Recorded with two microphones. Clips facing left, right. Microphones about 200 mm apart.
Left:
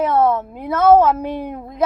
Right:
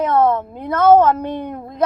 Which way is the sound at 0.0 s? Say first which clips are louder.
Even; 5° left (ahead or behind).